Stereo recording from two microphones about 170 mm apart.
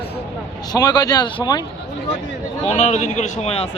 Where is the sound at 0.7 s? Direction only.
25° left (ahead or behind).